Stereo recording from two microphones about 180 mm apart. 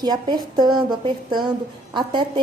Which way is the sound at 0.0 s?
25° right (ahead or behind).